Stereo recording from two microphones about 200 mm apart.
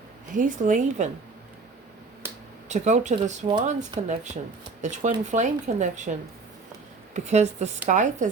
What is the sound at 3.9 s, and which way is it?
Speech, 20° right (ahead or behind).